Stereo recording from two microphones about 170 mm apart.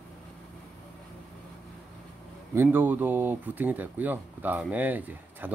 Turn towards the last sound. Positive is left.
turn(degrees=-10)  # may be behind; listen again after turning